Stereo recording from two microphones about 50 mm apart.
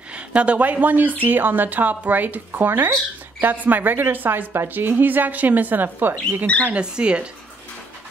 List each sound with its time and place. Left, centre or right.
0.1 s a woman's voice: right
6.7 s speech: centre